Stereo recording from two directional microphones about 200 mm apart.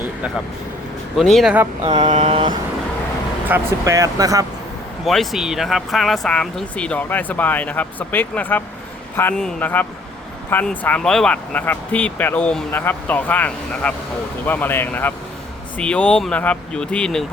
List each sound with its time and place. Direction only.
1.1 s speech: centre (ahead or behind)
1.8 s a sound: 35° right (ahead or behind)
3.5 s speech: 15° right (ahead or behind)
5.0 s speech: centre (ahead or behind)